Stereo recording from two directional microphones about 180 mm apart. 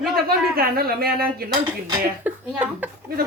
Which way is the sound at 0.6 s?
55° right (ahead or behind).